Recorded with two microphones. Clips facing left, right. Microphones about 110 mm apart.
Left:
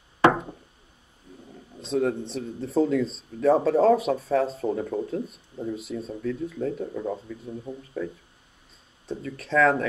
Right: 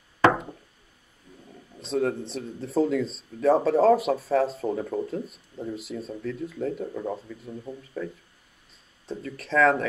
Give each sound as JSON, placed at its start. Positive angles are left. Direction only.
{"t": 1.3, "sound": "a sound", "side_deg": 20}
{"t": 1.8, "sound": "speech", "side_deg": 0}
{"t": 9.1, "sound": "speech", "side_deg": 0}